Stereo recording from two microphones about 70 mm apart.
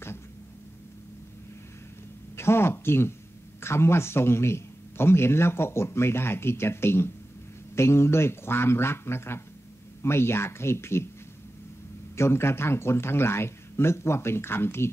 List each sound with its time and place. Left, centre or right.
2.3 s a sound: left
3.6 s a man's voice: left
12.2 s a man's voice: left